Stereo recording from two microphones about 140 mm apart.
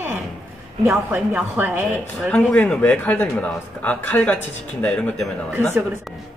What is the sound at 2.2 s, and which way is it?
Speech, 10° left (ahead or behind).